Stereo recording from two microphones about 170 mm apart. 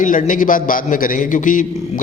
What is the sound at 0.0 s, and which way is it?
A man's voice, 50° left (ahead or behind).